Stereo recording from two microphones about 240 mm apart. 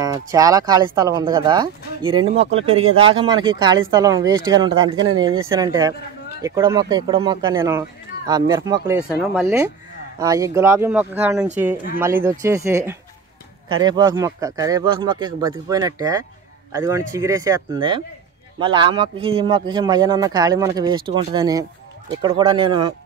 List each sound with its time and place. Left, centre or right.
0.0 s speech: centre
10.1 s speech: centre